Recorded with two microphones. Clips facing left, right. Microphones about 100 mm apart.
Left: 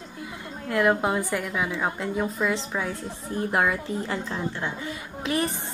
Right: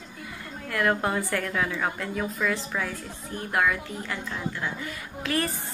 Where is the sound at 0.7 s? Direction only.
20° left (ahead or behind).